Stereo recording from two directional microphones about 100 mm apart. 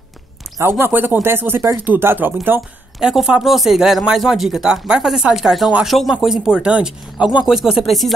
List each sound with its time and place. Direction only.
0.6 s speech: 25° right (ahead or behind)
3.0 s speech: 5° right (ahead or behind)